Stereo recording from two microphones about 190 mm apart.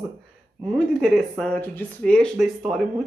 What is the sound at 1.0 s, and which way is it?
Speech, 5° left (ahead or behind).